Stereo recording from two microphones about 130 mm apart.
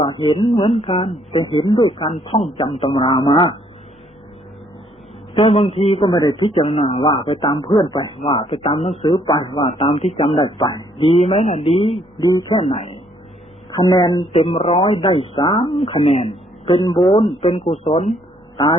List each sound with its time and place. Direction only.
0.0 s speech: 40° left (ahead or behind)
5.3 s speech: 45° left (ahead or behind)
6.1 s speech: 35° left (ahead or behind); by 7.0 s 50° left (ahead or behind)
7.0 s speech: 40° left (ahead or behind)
8.2 s speech: 45° left (ahead or behind)
9.0 s speech: 35° left (ahead or behind)
9.6 s speech: 50° left (ahead or behind)
12.2 s speech: 30° left (ahead or behind)
12.5 s speech: 55° left (ahead or behind)
13.7 s speech: 30° left (ahead or behind)
14.3 s speech: 50° left (ahead or behind)
17.0 s speech: 25° left (ahead or behind)
17.4 s speech: 55° left (ahead or behind)
18.5 s speech: 35° left (ahead or behind)